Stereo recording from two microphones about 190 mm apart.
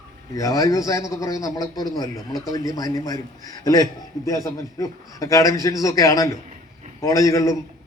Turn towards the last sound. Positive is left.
turn(degrees=15)  # may be behind; listen again after turning